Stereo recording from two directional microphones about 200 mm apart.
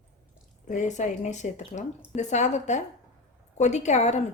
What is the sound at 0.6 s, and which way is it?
A woman's voice, 35° left (ahead or behind).